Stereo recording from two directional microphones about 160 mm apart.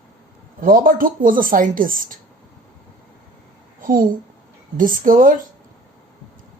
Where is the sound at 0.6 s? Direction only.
60° right (ahead or behind).